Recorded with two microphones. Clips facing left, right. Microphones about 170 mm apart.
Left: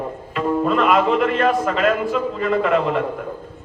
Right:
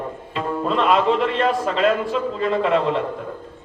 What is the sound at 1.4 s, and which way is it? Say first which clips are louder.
Speech: left 2 dB; 30° right (ahead or behind).